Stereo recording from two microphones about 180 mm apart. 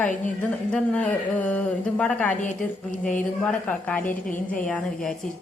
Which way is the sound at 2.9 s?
45° left (ahead or behind).